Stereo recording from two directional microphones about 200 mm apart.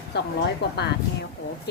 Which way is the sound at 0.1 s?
55° left (ahead or behind).